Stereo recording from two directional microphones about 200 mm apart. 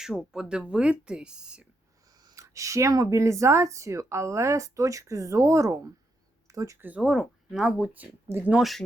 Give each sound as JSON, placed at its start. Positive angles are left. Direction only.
{"t": 0.0, "sound": "speech", "side_deg": -5}
{"t": 2.1, "sound": "speech", "side_deg": -15}